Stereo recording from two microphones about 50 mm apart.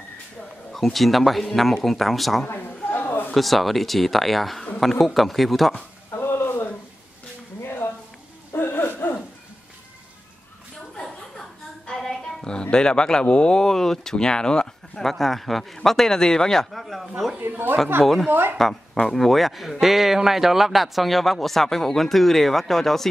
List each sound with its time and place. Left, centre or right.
0.7 s a man's voice: centre
2.4 s a sound: left
3.3 s a man's voice: centre
6.2 s a sound: left
8.5 s hoot: left
11.8 s music: centre
12.7 s speech: centre
15.0 s a man's voice: centre
17.4 s speech: right
18.0 s a man's voice: centre
18.3 s speech: right
19.0 s a man's voice: centre